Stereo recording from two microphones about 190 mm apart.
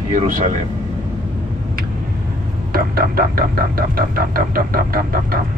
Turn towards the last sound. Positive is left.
turn(degrees=-50)  # may be behind; listen again after turning